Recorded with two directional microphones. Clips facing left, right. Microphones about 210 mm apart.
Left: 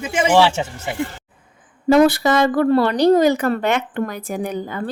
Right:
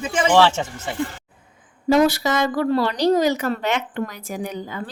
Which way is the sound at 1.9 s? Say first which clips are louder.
Left 4 dB; 55° left (ahead or behind).